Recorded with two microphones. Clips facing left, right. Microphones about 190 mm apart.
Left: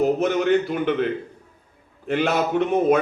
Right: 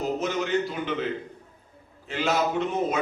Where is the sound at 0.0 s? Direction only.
60° left (ahead or behind).